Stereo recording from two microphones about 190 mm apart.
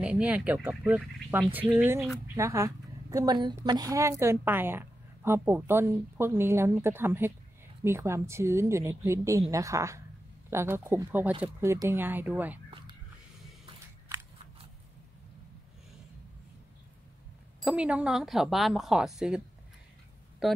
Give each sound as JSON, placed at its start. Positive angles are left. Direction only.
{"t": 0.0, "sound": "a woman's voice", "side_deg": -5}
{"t": 17.6, "sound": "speech", "side_deg": -5}